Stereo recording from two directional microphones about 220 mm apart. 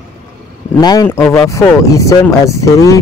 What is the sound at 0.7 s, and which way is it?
Speech, 20° left (ahead or behind).